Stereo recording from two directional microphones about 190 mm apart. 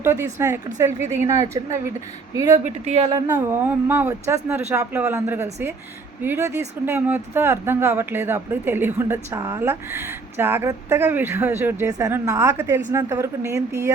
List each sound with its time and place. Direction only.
0.0 s speech: 10° right (ahead or behind)
2.6 s speech: 35° right (ahead or behind)
3.1 s speech: 15° right (ahead or behind)